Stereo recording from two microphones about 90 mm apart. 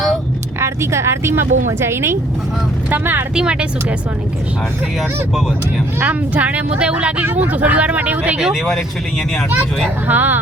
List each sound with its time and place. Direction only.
0.6 s speech: 30° right (ahead or behind)
3.3 s speech: 10° right (ahead or behind)
6.0 s speech: 15° right (ahead or behind)
10.1 s speech: 20° right (ahead or behind)